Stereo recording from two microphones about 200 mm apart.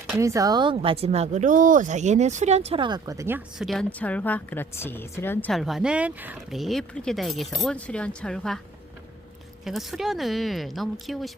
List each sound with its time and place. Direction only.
0.2 s speech: 15° right (ahead or behind)
3.7 s a woman's voice: 5° left (ahead or behind)
9.6 s a woman's voice: centre (ahead or behind)